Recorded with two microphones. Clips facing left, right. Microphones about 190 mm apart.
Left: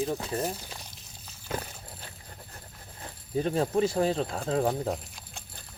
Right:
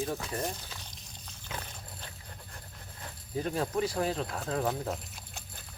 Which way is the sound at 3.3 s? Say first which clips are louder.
Left 5 dB; 25° left (ahead or behind).